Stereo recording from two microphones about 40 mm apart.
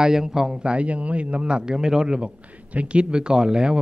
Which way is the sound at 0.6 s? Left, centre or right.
Right.